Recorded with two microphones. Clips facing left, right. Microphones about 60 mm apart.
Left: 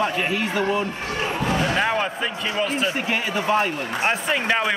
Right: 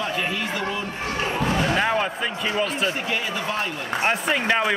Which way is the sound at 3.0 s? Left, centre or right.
Left.